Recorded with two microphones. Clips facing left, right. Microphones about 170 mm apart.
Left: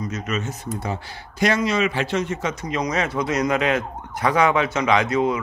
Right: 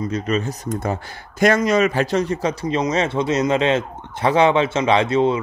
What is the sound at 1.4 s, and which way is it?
Speech, 50° right (ahead or behind).